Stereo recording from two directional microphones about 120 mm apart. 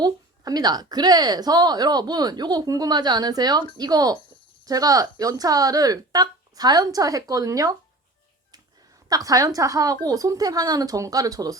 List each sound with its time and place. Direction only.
0.0 s a woman's voice: 35° right (ahead or behind)
9.0 s a woman's voice: 30° right (ahead or behind)